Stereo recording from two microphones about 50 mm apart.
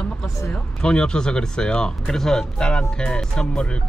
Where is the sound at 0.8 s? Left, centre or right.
Centre.